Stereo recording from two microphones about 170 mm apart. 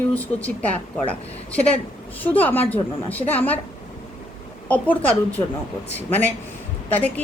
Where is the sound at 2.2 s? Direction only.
10° left (ahead or behind).